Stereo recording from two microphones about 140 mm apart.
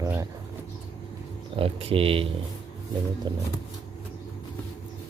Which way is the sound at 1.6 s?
45° right (ahead or behind).